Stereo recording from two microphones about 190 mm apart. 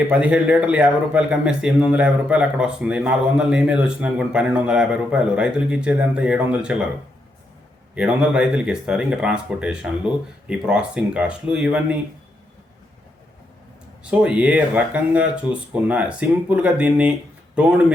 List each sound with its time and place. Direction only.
0.1 s a man's voice: 5° right (ahead or behind)
7.9 s a man's voice: 5° right (ahead or behind)
14.0 s speech: 5° right (ahead or behind)